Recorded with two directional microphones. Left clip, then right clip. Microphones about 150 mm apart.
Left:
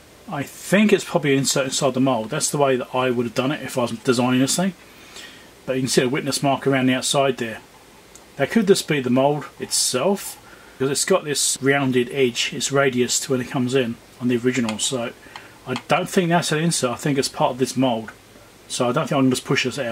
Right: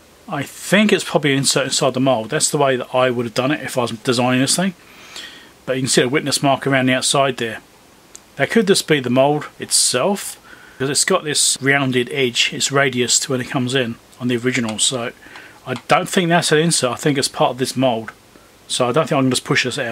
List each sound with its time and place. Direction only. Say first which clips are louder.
0.3 s speech: right 3 dB; 25° right (ahead or behind)